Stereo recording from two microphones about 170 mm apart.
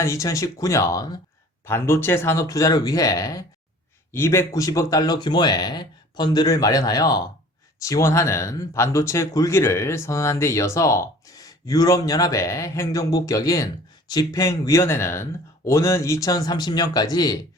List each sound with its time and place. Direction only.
0.0 s speech: 20° left (ahead or behind)